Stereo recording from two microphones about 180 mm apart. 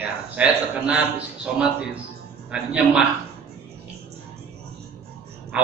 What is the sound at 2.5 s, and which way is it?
Speech, 5° right (ahead or behind).